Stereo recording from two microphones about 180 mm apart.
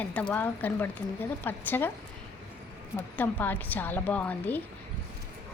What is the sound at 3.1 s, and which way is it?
A woman's voice, 10° left (ahead or behind).